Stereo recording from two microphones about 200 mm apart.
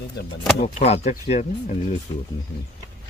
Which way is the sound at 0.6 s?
35° left (ahead or behind).